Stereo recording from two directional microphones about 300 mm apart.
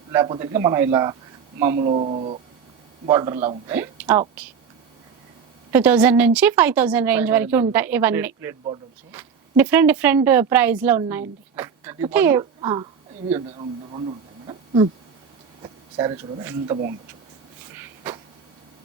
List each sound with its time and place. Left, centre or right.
0.1 s a man's voice: centre
1.7 s a man's voice: right
3.3 s speech: right
3.7 s a woman's voice: centre
5.7 s speech: centre